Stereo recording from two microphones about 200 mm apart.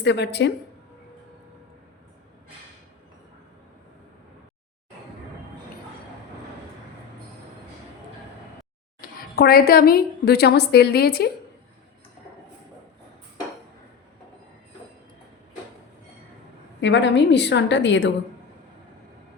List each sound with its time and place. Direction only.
0.0 s a woman's voice: 60° left (ahead or behind)
9.0 s a woman's voice: 50° left (ahead or behind)
16.8 s a woman's voice: 65° left (ahead or behind)